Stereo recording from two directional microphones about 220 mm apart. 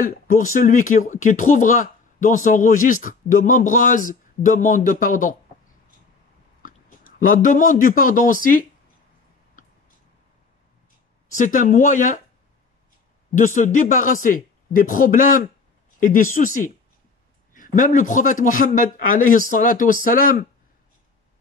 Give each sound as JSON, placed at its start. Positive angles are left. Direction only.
{"t": 0.0, "sound": "speech", "side_deg": 40}
{"t": 7.2, "sound": "speech", "side_deg": 40}
{"t": 11.3, "sound": "speech", "side_deg": 35}
{"t": 13.3, "sound": "speech", "side_deg": 35}